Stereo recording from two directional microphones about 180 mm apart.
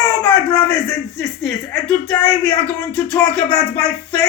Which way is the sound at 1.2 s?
Centre (ahead or behind).